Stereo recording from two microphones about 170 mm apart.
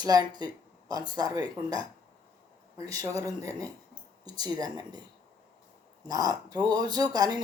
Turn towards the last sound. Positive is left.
turn(degrees=-20)  # may be behind; listen again after turning